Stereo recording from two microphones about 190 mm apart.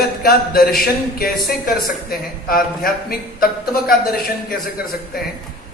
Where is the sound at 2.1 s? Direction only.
50° left (ahead or behind).